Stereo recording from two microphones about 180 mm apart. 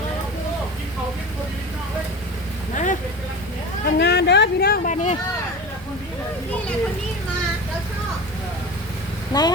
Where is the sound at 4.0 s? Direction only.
70° left (ahead or behind).